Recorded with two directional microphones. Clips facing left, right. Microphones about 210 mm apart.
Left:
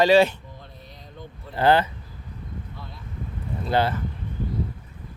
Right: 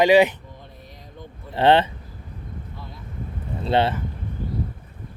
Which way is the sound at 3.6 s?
25° right (ahead or behind).